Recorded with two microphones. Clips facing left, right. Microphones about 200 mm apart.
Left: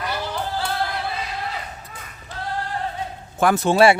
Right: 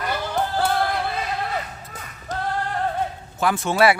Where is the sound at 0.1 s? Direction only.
50° right (ahead or behind).